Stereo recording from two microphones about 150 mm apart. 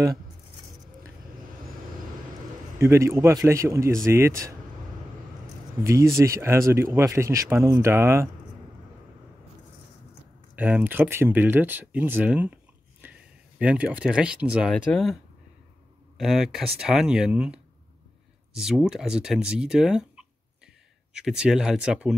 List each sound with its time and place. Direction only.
2.8 s speech: 20° right (ahead or behind)
5.9 s speech: 20° right (ahead or behind)
10.5 s speech: 10° right (ahead or behind)
13.6 s speech: 10° right (ahead or behind)
16.2 s speech: centre (ahead or behind)